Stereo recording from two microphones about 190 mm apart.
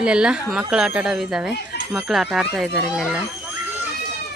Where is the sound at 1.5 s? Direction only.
60° left (ahead or behind).